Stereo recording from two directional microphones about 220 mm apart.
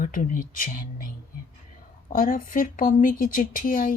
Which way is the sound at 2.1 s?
40° left (ahead or behind).